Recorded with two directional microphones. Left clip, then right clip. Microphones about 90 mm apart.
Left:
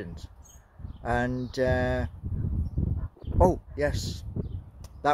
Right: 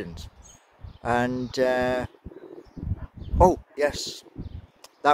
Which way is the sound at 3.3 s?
20° right (ahead or behind).